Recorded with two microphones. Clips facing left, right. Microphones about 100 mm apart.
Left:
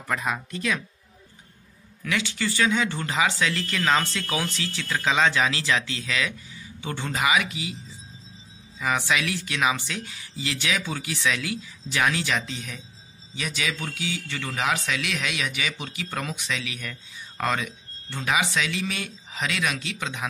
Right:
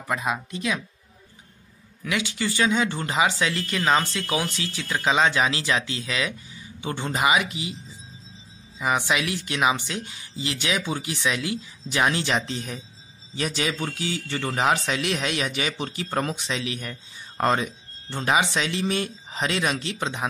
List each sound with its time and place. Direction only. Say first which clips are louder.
0.0 s speech: right 1 dB; 20° right (ahead or behind)
2.0 s speech: right 1 dB; 15° right (ahead or behind)
8.7 s a man's voice: right 1 dB; 20° right (ahead or behind)